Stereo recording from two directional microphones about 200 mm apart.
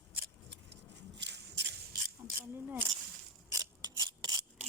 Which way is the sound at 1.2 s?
60° right (ahead or behind).